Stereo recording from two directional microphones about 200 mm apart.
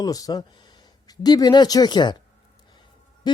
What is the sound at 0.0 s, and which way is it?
Speech, 20° left (ahead or behind).